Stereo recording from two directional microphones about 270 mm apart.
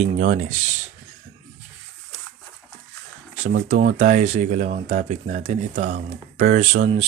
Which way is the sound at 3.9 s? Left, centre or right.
Right.